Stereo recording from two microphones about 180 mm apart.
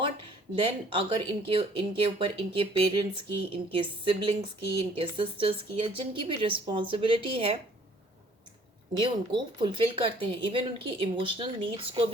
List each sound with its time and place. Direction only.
0.6 s a woman's voice: 30° right (ahead or behind)
9.0 s a woman's voice: 25° right (ahead or behind)